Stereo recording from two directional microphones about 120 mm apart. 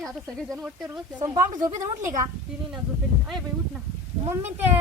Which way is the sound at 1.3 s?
30° right (ahead or behind).